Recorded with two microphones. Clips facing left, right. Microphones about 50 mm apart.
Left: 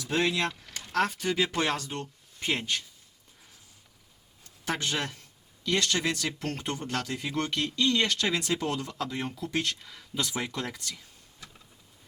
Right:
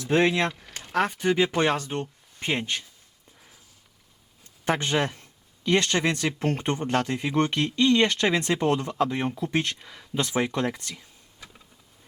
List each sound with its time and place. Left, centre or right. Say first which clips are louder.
0.0 s speech: right 6 dB; right
4.6 s speech: right 6 dB; right
10.2 s speech: right 7 dB; right